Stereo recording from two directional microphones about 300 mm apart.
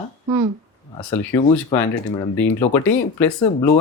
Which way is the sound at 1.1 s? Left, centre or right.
Centre.